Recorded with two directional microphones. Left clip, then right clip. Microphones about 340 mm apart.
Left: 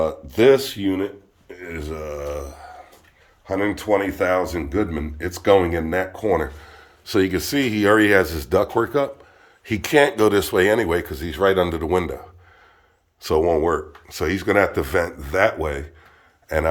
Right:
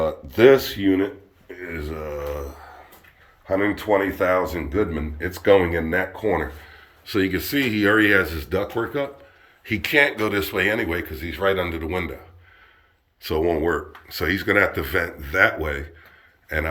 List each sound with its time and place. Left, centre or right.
0.3 s speech: centre
1.5 s a sound: centre
3.4 s speech: centre
13.2 s speech: centre